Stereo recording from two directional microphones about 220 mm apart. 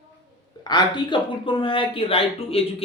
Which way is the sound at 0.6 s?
20° left (ahead or behind).